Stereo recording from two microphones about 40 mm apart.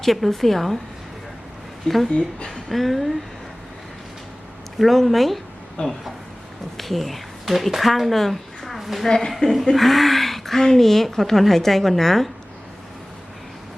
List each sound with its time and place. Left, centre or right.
0.0 s a woman's voice: centre
2.0 s speech: left
2.5 s a woman's voice: centre
4.8 s a woman's voice: centre
5.8 s speech: left
6.7 s speech: centre
9.0 s a woman's voice: centre
9.7 s a woman's voice: centre